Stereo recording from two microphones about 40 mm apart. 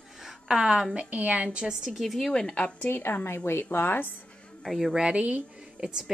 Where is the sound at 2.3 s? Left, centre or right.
Left.